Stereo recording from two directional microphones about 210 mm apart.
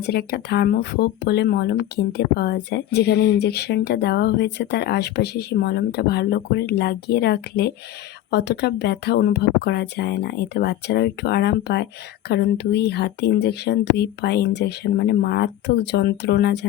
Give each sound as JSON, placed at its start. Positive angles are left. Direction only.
{"t": 0.0, "sound": "speech", "side_deg": 50}